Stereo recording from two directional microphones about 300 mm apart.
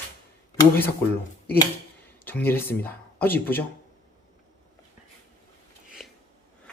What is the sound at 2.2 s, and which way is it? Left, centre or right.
Speech, centre.